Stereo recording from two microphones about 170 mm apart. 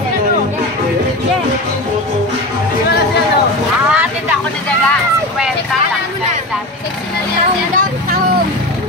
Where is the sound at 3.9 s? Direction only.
10° right (ahead or behind).